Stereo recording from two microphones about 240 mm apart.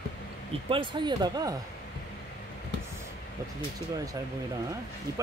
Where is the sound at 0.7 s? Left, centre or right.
Centre.